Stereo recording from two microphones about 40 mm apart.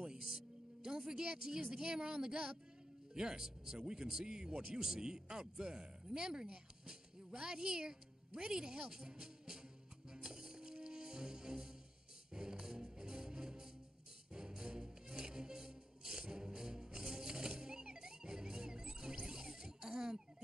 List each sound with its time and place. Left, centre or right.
0.8 s a woman's voice: centre
10.2 s music: centre
19.2 s a sound: centre